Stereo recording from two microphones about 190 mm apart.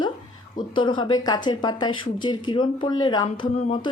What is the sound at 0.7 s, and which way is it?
Speech, 25° left (ahead or behind).